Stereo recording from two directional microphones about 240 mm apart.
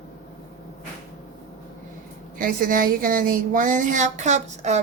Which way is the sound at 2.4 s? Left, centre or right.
Right.